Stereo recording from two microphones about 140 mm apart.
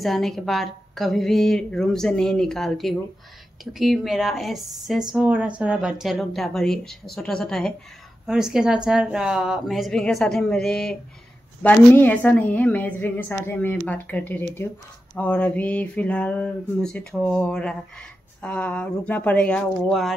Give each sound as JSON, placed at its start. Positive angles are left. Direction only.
{"t": 0.0, "sound": "a woman's voice", "side_deg": 0}